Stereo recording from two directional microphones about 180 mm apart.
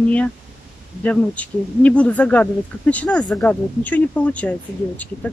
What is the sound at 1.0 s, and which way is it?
Speech, 10° left (ahead or behind).